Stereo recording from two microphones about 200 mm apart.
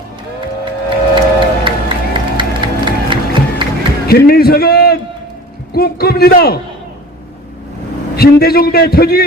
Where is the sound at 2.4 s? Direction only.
25° right (ahead or behind).